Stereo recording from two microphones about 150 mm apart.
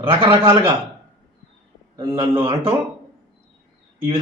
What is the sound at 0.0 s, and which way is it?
Speech, 35° right (ahead or behind).